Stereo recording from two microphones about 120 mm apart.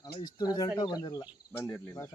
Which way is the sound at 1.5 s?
15° left (ahead or behind).